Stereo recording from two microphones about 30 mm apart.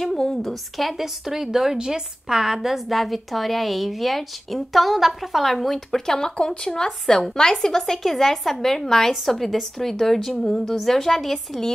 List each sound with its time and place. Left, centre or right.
0.0 s a woman's voice: centre
0.9 s a woman's voice: centre
2.9 s a woman's voice: centre
6.4 s a woman's voice: left; by 11.6 s centre